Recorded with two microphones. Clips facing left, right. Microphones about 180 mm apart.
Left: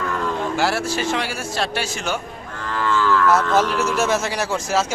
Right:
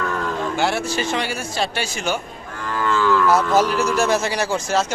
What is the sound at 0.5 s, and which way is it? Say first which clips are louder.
Speech: right 1 dB; 5° left (ahead or behind).